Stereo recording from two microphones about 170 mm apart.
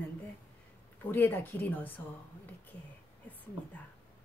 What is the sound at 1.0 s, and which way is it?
Speech, 10° left (ahead or behind).